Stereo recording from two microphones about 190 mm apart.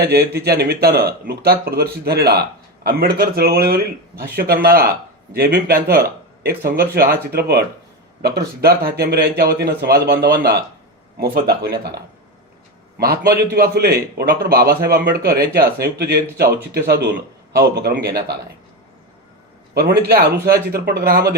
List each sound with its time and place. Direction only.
0.0 s speech: 55° right (ahead or behind)
13.0 s speech: 55° right (ahead or behind)
19.7 s speech: 55° right (ahead or behind)